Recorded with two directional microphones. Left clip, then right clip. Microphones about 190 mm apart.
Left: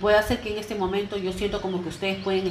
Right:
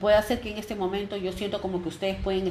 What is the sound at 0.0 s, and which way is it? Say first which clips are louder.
Speech: left 1 dB; 40° right (ahead or behind).